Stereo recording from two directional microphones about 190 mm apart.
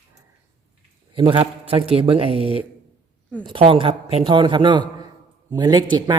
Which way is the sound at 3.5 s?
30° right (ahead or behind).